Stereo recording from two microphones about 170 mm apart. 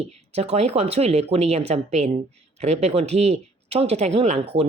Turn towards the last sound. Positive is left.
turn(degrees=-40)  # may be behind; listen again after turning